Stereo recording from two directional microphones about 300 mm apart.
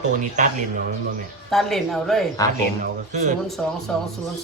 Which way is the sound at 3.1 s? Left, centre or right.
Right.